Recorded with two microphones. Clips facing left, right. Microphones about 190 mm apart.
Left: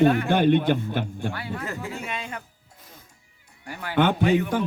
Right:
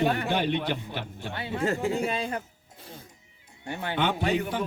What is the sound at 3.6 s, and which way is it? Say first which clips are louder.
Speech: right 1 dB; 25° right (ahead or behind).